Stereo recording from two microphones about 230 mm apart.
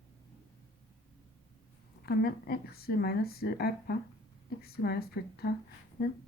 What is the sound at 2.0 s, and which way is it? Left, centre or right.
Speech, left.